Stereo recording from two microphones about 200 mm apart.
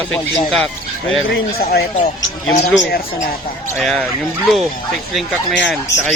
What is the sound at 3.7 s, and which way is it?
Speech, centre (ahead or behind).